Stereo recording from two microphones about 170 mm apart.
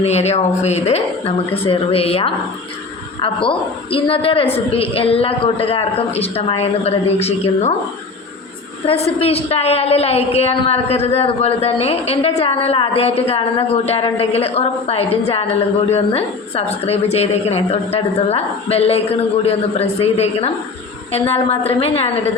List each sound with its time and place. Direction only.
0.0 s a woman's voice: 40° left (ahead or behind)
3.9 s a woman's voice: 30° left (ahead or behind)
8.9 s a woman's voice: 35° left (ahead or behind)